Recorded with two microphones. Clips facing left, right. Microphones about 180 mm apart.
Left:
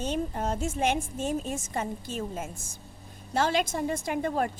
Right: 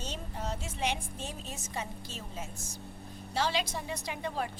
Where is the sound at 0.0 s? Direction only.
50° left (ahead or behind).